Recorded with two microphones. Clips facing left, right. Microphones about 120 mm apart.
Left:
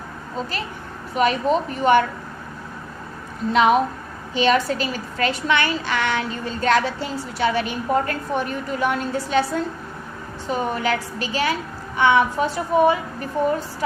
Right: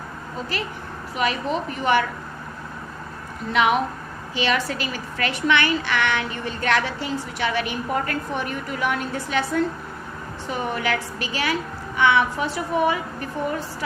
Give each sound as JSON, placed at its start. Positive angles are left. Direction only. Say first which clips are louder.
{"t": 1.1, "sound": "a woman's voice", "louder": "left 5 dB", "side_deg": 40}
{"t": 3.5, "sound": "a woman's voice", "louder": "left 3 dB", "side_deg": 35}
{"t": 10.5, "sound": "a woman's voice", "louder": "left 3 dB", "side_deg": 35}